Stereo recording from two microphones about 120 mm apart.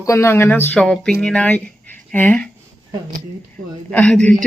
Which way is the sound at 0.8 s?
5° left (ahead or behind).